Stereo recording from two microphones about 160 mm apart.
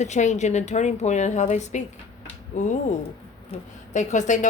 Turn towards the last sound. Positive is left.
turn(degrees=50)  # may be behind; listen again after turning